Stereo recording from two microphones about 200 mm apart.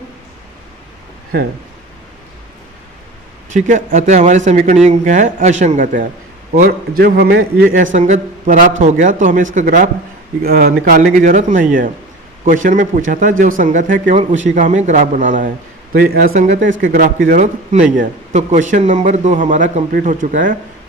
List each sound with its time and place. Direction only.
3.5 s a man's voice: 40° right (ahead or behind)
7.9 s a man's voice: 35° right (ahead or behind); by 16.3 s 50° right (ahead or behind)
16.3 s speech: 35° right (ahead or behind)